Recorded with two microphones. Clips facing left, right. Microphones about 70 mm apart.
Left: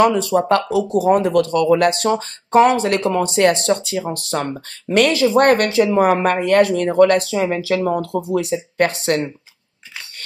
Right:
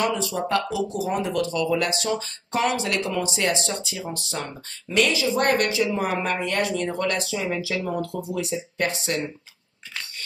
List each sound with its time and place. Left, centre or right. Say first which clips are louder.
0.0 s speech: left 10 dB; left